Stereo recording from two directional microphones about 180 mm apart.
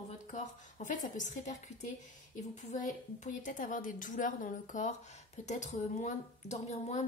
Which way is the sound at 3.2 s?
45° left (ahead or behind).